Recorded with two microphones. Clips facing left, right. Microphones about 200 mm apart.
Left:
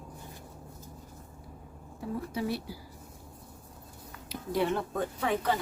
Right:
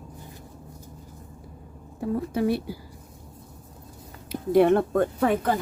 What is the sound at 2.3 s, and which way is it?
Speech, 55° right (ahead or behind).